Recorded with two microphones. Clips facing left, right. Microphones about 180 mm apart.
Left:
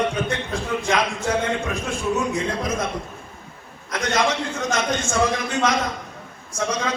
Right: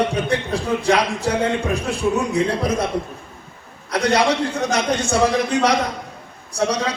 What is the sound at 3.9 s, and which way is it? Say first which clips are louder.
Speech: right 5 dB; 35° right (ahead or behind).